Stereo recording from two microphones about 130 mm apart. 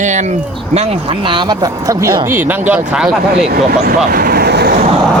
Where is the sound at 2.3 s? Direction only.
15° right (ahead or behind).